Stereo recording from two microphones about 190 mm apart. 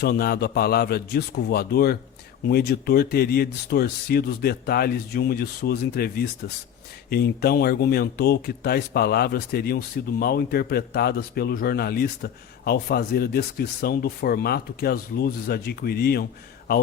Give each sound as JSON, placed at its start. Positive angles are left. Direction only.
{"t": 0.0, "sound": "speech", "side_deg": 55}